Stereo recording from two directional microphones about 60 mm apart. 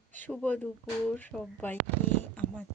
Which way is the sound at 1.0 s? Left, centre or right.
Centre.